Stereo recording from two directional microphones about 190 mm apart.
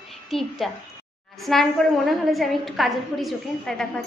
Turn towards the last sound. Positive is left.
turn(degrees=0)  # may be behind; listen again after turning